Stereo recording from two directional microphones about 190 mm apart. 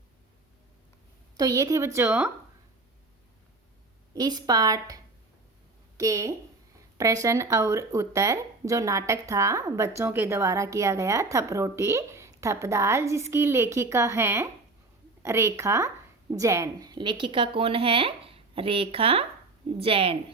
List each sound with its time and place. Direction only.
1.4 s speech: 20° right (ahead or behind)
4.1 s a woman's voice: 20° right (ahead or behind)
6.0 s a woman's voice: 15° right (ahead or behind)